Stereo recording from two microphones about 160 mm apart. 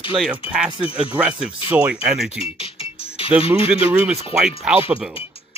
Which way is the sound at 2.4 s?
40° left (ahead or behind).